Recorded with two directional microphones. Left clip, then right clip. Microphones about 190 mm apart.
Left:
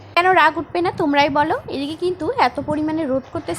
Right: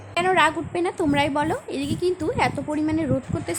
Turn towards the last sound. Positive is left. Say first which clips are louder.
# left 4 dB
turn(degrees=5)  # may be behind; listen again after turning